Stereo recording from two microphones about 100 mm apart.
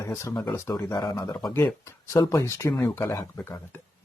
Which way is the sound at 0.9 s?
40° left (ahead or behind).